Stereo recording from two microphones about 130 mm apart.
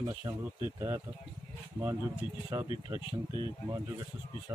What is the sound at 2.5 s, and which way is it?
Speech, 25° right (ahead or behind).